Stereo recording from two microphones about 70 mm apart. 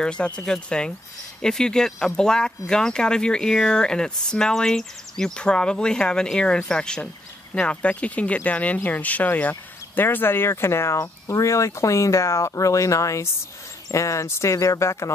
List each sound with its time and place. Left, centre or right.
0.0 s speech: centre; by 15.1 s left